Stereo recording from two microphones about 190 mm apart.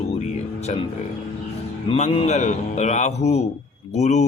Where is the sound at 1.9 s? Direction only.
30° left (ahead or behind).